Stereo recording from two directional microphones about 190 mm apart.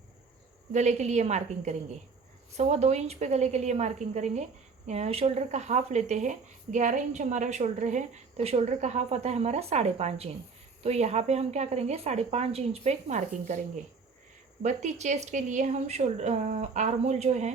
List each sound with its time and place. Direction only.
0.7 s speech: 40° right (ahead or behind)
14.6 s speech: 40° right (ahead or behind)